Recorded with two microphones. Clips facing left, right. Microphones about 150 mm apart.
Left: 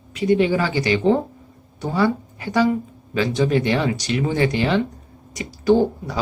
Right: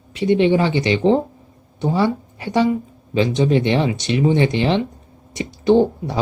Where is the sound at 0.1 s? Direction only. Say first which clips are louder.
Right 2 dB; 25° right (ahead or behind).